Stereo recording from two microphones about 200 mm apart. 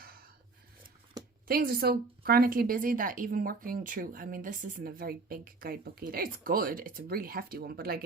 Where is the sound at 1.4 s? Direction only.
45° right (ahead or behind).